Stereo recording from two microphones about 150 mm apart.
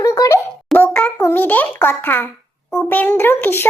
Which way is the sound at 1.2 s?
15° left (ahead or behind).